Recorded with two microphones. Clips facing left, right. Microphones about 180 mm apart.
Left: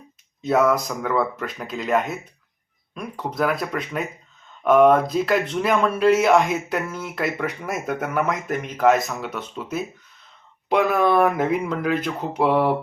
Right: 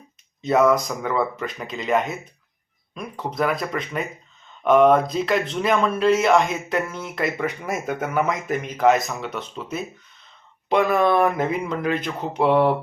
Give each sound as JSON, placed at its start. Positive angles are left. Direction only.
{"t": 0.4, "sound": "speech", "side_deg": 5}